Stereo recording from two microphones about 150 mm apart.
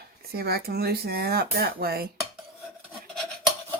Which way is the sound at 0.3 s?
90° right.